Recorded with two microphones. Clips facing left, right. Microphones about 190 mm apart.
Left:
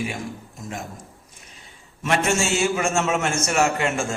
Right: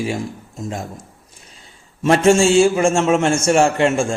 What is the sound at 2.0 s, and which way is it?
A man's voice, 30° right (ahead or behind).